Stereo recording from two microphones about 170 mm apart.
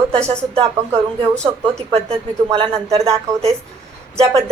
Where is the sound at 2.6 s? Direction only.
35° right (ahead or behind).